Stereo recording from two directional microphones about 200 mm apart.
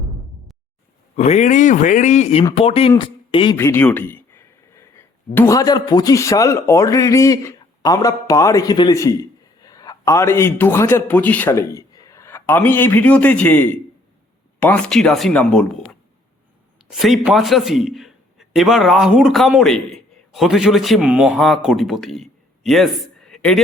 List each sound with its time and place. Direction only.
1.1 s speech: 35° left (ahead or behind)
3.6 s a man's voice: 10° left (ahead or behind)
23.2 s a sound: 5° left (ahead or behind)